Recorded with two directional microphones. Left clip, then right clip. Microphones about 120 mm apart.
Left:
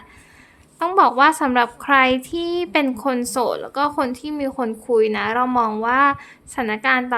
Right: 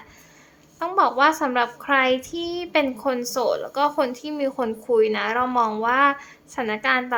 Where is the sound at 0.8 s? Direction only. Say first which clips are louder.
Left 4 dB; 35° left (ahead or behind).